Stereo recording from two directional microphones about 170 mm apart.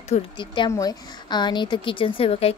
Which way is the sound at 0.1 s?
30° left (ahead or behind).